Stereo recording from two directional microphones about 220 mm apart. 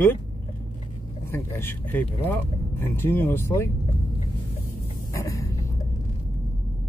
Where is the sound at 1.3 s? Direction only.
10° left (ahead or behind).